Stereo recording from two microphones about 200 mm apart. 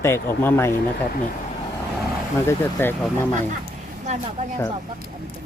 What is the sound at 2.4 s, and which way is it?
Speech, 10° left (ahead or behind).